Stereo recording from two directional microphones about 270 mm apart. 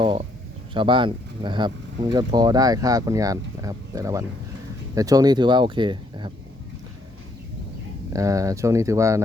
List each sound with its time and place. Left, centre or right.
0.0 s speech: centre
8.1 s speech: centre